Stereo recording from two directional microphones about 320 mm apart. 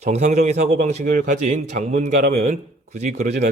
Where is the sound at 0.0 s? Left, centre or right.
Right.